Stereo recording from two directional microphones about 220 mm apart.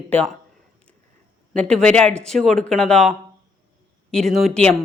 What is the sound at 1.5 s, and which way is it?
Speech, 5° left (ahead or behind).